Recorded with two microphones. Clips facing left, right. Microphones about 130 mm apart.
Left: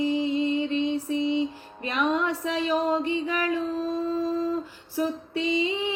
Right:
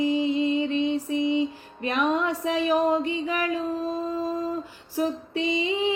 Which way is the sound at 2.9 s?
15° right (ahead or behind).